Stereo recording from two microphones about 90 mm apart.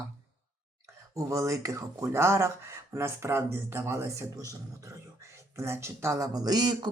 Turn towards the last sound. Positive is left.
turn(degrees=-50)  # may be behind; listen again after turning